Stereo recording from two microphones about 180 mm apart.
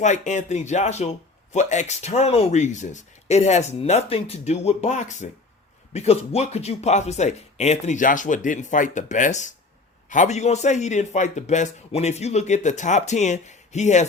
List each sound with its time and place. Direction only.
0.0 s a man's voice: 40° left (ahead or behind)